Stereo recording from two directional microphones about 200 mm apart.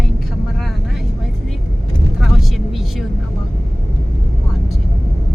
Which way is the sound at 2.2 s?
Centre (ahead or behind).